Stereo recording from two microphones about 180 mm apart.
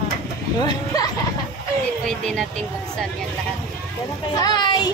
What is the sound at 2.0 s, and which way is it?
Speech, centre (ahead or behind).